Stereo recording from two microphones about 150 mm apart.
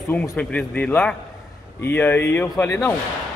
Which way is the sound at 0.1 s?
10° left (ahead or behind).